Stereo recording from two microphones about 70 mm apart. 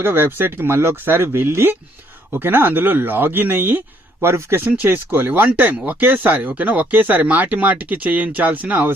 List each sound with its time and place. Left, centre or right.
0.0 s speech: right